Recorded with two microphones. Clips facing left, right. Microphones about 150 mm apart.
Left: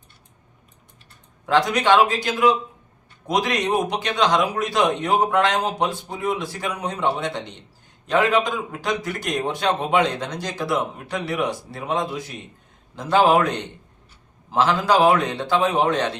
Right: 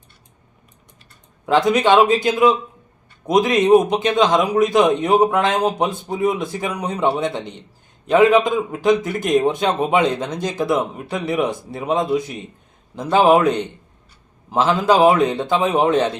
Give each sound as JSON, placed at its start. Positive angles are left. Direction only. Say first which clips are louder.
{"t": 1.5, "sound": "a man's voice", "louder": "right 3 dB", "side_deg": -20}
{"t": 14.5, "sound": "a man's voice", "louder": "right 3 dB", "side_deg": -20}